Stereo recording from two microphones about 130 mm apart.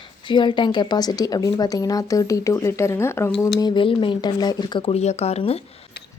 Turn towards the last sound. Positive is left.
turn(degrees=50)  # may be behind; listen again after turning